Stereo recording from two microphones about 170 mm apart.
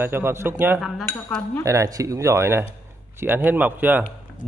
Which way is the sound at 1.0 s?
10° left (ahead or behind).